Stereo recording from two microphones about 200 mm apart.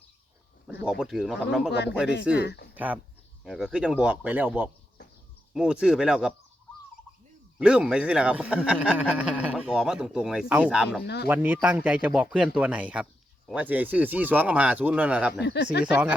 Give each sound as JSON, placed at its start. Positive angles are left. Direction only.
{"t": 0.7, "sound": "speech", "side_deg": -5}
{"t": 2.3, "sound": "speech", "side_deg": 55}
{"t": 2.7, "sound": "speech", "side_deg": -5}
{"t": 7.6, "sound": "speech", "side_deg": -5}
{"t": 11.0, "sound": "speech", "side_deg": 55}
{"t": 11.3, "sound": "speech", "side_deg": -10}
{"t": 15.4, "sound": "speech", "side_deg": 60}
{"t": 15.8, "sound": "speech", "side_deg": -5}